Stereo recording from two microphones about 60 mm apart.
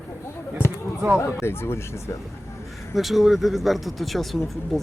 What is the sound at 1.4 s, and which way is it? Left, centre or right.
Speech, left.